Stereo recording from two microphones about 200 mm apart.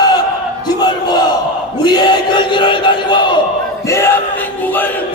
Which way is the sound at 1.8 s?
20° left (ahead or behind).